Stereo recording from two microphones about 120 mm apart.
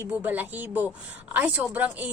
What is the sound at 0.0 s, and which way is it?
A woman's voice, 15° right (ahead or behind).